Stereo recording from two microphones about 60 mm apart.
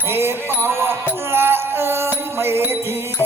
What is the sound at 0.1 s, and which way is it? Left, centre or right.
Music, right.